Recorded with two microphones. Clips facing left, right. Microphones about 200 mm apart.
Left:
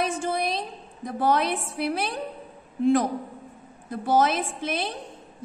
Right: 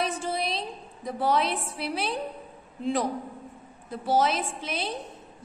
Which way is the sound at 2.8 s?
50° left (ahead or behind).